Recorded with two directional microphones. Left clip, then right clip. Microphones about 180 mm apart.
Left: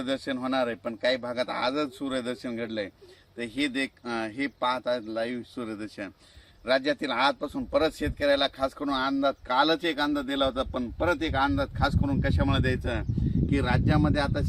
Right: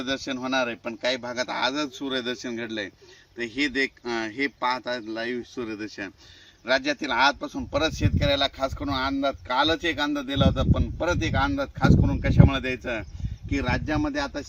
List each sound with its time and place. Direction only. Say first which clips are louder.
0.3 s speech: right 2 dB; 25° left (ahead or behind); by 6.1 s 50° left (ahead or behind)
6.7 s speech: right 1 dB; 35° left (ahead or behind); by 14.4 s 40° right (ahead or behind)